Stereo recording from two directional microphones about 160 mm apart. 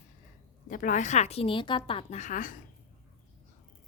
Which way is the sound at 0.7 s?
55° left (ahead or behind).